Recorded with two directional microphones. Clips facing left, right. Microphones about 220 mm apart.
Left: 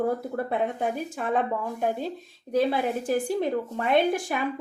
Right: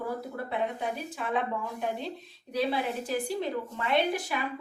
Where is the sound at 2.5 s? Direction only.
50° left (ahead or behind).